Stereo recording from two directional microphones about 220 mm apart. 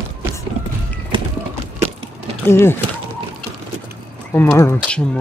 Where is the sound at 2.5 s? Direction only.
10° left (ahead or behind).